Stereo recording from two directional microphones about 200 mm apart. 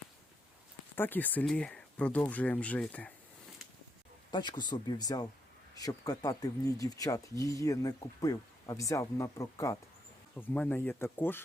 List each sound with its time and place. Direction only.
0.9 s speech: 10° left (ahead or behind)
4.3 s speech: 20° left (ahead or behind)